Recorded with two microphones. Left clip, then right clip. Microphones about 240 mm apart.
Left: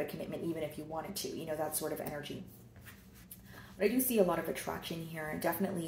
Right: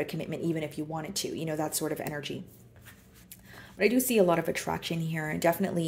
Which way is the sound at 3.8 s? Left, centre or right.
Right.